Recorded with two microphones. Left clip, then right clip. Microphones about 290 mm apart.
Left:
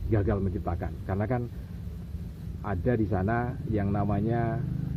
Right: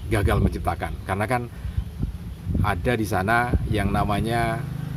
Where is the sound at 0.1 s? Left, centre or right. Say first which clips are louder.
Right 5 dB; right.